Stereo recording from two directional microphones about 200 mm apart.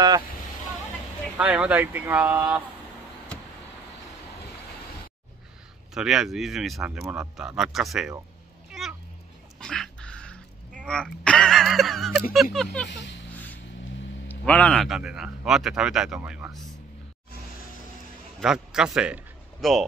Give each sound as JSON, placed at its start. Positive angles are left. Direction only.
{"t": 1.4, "sound": "speech", "side_deg": -5}
{"t": 5.9, "sound": "speech", "side_deg": -5}
{"t": 8.8, "sound": "a sound", "side_deg": 0}
{"t": 9.6, "sound": "dog", "side_deg": 5}
{"t": 10.8, "sound": "speech", "side_deg": 5}
{"t": 12.9, "sound": "speech", "side_deg": 60}
{"t": 14.2, "sound": "speech", "side_deg": 10}
{"t": 18.4, "sound": "a man's voice", "side_deg": -5}